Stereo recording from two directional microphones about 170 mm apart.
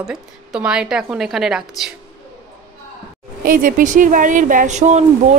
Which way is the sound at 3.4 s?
55° right (ahead or behind).